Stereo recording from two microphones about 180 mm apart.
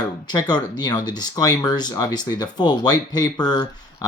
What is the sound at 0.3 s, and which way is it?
Speech, 25° left (ahead or behind).